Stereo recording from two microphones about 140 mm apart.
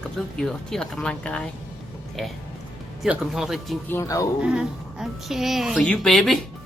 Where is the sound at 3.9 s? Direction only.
20° left (ahead or behind).